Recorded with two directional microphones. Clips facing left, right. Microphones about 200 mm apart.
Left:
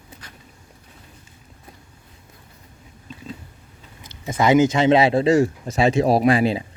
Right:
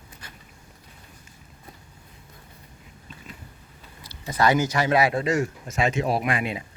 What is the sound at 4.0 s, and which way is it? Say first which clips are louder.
Speech: left 2 dB; 20° left (ahead or behind).